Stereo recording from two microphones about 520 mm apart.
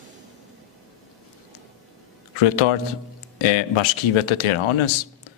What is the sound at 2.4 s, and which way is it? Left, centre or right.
Speech, left.